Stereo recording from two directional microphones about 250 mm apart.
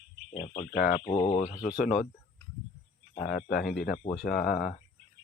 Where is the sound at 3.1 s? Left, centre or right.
Left.